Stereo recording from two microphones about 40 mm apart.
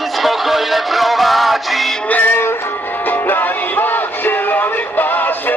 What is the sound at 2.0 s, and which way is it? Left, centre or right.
Music, left.